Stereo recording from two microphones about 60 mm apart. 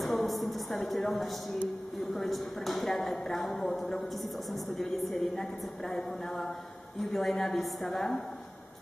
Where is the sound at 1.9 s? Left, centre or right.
Centre.